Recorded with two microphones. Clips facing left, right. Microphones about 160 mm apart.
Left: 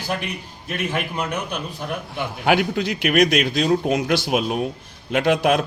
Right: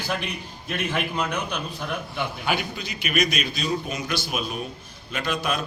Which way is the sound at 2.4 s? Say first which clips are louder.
Left 12 dB; 75° left (ahead or behind).